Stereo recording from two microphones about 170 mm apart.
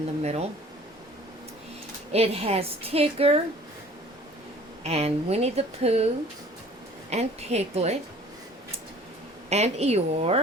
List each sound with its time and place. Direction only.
0.2 s speech: 40° right (ahead or behind)
2.1 s speech: 35° right (ahead or behind)
4.8 s speech: 40° right (ahead or behind)
7.1 s speech: 40° right (ahead or behind)
9.5 s speech: 40° right (ahead or behind)